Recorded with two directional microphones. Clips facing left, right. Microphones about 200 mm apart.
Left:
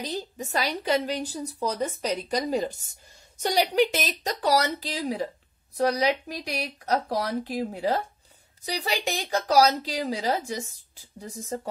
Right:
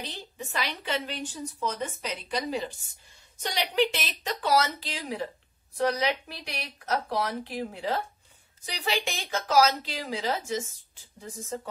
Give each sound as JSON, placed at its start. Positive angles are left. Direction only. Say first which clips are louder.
{"t": 0.0, "sound": "a woman's voice", "louder": "left 7 dB", "side_deg": 40}